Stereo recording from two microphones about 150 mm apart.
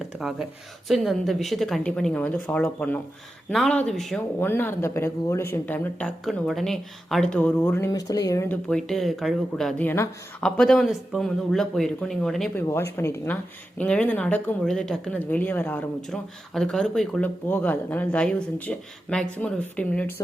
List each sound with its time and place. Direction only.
0.2 s speech: 5° right (ahead or behind)
4.4 s speech: 15° left (ahead or behind)
7.9 s speech: 25° left (ahead or behind)
8.4 s speech: 5° left (ahead or behind)
9.8 s speech: 15° left (ahead or behind)
10.4 s speech: 5° left (ahead or behind)
12.6 s speech: 15° left (ahead or behind)